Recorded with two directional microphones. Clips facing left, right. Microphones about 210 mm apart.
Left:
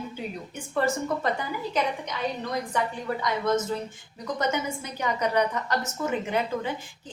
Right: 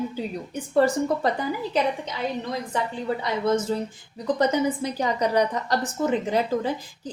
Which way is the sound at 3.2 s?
30° right (ahead or behind).